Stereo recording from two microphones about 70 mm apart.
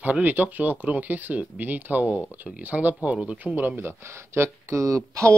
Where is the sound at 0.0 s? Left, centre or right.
Right.